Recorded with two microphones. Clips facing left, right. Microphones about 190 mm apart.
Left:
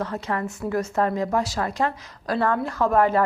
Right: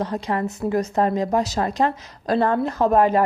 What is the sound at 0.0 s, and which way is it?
A woman's voice, 15° right (ahead or behind).